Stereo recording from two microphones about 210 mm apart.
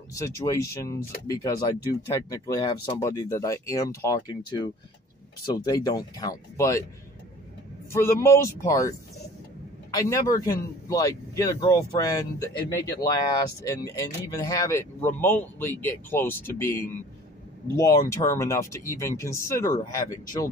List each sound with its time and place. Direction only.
0.1 s speech: 15° left (ahead or behind)
7.9 s speech: 15° left (ahead or behind)